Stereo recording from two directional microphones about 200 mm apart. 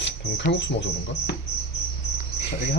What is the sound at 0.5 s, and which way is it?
Speech, 60° left (ahead or behind).